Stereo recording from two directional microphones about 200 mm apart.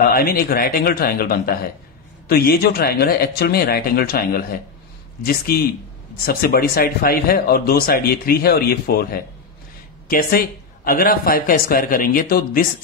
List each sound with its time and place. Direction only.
0.0 s speech: 50° left (ahead or behind)